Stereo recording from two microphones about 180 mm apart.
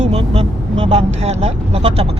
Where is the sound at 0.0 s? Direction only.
35° right (ahead or behind).